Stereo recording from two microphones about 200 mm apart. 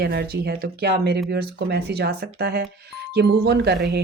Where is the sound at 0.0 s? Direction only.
55° right (ahead or behind).